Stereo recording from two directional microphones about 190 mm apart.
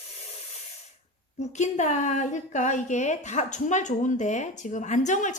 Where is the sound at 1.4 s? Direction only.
40° left (ahead or behind).